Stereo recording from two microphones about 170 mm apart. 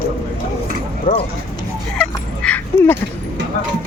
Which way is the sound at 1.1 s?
55° left (ahead or behind).